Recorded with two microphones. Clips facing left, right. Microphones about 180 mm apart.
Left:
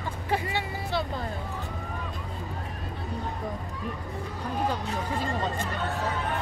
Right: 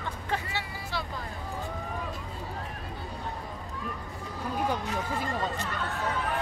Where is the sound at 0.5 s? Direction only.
20° left (ahead or behind).